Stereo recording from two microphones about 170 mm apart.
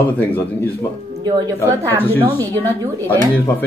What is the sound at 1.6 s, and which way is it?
Speech, 10° left (ahead or behind).